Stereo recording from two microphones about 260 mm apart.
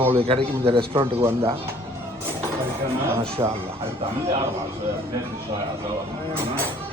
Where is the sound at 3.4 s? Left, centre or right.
Centre.